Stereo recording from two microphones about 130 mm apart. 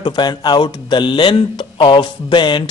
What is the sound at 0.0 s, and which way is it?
Speech, 30° left (ahead or behind).